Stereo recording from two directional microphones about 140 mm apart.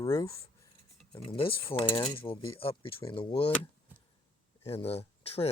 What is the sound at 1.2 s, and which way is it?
Speech, 40° left (ahead or behind).